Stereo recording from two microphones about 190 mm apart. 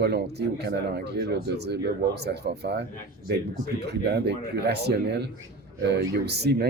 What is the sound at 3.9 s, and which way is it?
Speech, 60° right (ahead or behind).